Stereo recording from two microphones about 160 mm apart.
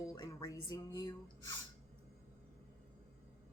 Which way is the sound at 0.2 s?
25° left (ahead or behind).